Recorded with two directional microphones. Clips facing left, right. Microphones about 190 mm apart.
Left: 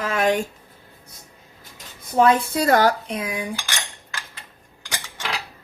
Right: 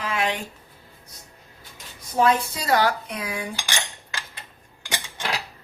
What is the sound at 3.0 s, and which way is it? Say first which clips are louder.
Cutlery: left 3 dB; 25° left (ahead or behind).